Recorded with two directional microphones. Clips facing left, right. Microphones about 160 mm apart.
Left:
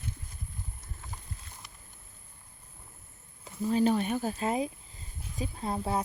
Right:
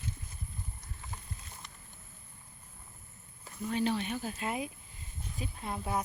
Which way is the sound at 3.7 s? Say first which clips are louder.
Left 6 dB; 40° left (ahead or behind).